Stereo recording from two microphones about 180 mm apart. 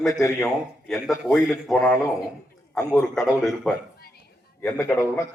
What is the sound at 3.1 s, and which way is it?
Speech, centre (ahead or behind).